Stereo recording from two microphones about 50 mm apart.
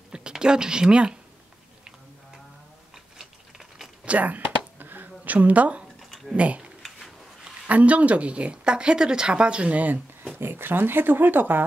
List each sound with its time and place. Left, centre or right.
0.1 s speech: centre
3.2 s a sound: centre
4.0 s whispering: right
5.9 s a sound: centre
6.3 s speech: right
10.3 s speech: right